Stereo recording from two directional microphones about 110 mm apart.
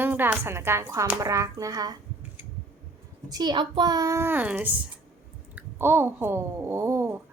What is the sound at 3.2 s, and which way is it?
A child's voice, 40° right (ahead or behind).